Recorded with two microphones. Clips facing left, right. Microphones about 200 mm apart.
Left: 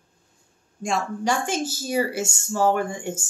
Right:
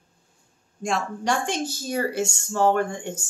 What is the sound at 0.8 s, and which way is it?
A woman's voice, centre (ahead or behind).